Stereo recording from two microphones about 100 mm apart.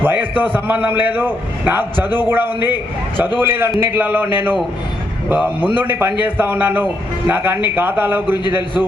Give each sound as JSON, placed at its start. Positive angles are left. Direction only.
{"t": 0.0, "sound": "a man's voice", "side_deg": -20}
{"t": 8.4, "sound": "a man's voice", "side_deg": 50}